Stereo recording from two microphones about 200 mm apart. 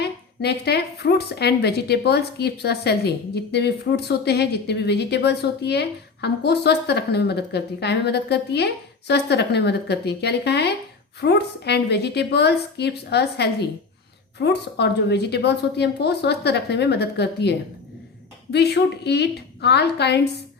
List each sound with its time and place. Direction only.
0.0 s a woman's voice: 55° left (ahead or behind)
18.5 s a woman's voice: 55° left (ahead or behind)